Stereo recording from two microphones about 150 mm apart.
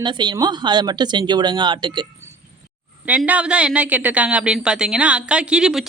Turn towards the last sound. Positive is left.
turn(degrees=-5)  # may be behind; listen again after turning